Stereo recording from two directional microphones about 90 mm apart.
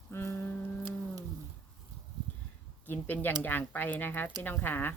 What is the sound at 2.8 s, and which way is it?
Speech, 20° left (ahead or behind).